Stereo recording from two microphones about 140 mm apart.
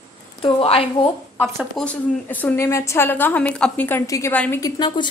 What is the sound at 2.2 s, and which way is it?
A woman's voice, 15° left (ahead or behind).